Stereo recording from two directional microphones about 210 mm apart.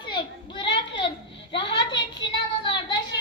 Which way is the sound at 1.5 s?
25° left (ahead or behind).